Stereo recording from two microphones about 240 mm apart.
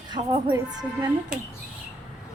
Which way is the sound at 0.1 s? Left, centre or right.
Centre.